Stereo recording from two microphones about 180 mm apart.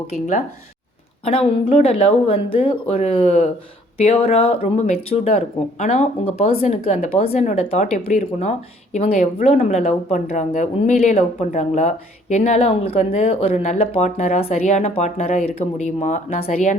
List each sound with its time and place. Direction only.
1.2 s speech: 30° left (ahead or behind)